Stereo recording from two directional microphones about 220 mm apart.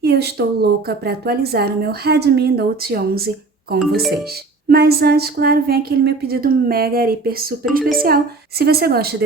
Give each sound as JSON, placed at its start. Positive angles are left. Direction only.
{"t": 0.0, "sound": "a woman's voice", "side_deg": -45}
{"t": 4.7, "sound": "a woman's voice", "side_deg": -45}